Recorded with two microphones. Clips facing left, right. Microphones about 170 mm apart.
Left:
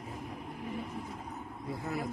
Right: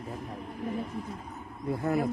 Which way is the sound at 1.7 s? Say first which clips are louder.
Right 9 dB; 55° right (ahead or behind).